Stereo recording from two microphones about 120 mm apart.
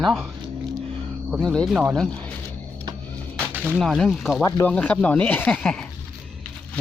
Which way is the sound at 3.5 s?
15° right (ahead or behind).